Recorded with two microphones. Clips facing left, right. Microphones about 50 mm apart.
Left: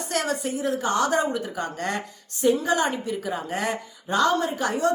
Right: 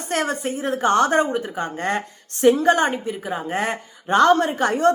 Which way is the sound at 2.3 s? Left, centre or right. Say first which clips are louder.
Right 6 dB; right.